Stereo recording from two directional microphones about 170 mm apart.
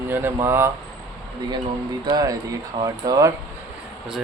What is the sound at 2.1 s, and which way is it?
Speech, 20° right (ahead or behind).